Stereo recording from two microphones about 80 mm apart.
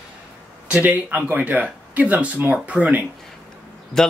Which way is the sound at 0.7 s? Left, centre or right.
Right.